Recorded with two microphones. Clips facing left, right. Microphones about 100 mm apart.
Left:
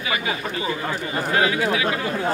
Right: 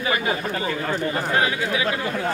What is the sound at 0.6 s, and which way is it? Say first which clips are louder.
Speech: right 2 dB; 10° left (ahead or behind).